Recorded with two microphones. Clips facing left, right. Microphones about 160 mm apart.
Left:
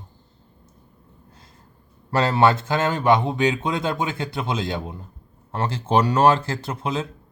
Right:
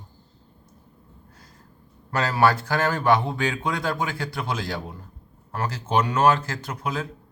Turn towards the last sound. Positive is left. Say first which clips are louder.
# left 3 dB
turn(degrees=25)  # may be behind; listen again after turning